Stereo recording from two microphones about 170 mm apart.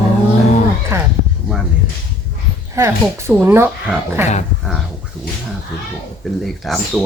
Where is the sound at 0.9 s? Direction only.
15° right (ahead or behind).